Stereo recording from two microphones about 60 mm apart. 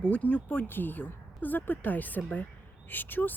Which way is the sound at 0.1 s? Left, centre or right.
Left.